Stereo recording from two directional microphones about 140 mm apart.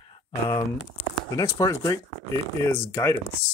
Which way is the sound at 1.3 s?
25° left (ahead or behind).